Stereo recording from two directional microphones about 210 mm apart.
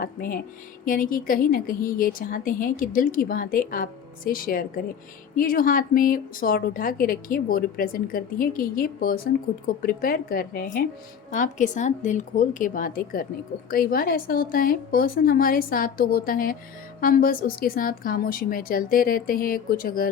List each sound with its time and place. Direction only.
0.0 s a woman's voice: 45° left (ahead or behind)